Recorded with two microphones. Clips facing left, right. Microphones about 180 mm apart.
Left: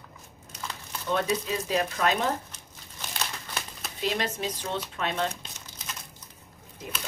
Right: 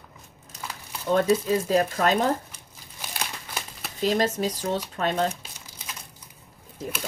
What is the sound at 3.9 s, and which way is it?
A woman's voice, 40° right (ahead or behind).